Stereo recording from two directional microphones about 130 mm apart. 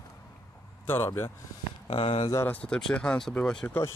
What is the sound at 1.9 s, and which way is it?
Speech, 40° left (ahead or behind).